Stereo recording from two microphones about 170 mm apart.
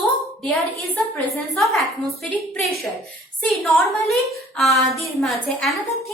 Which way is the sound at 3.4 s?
Centre (ahead or behind).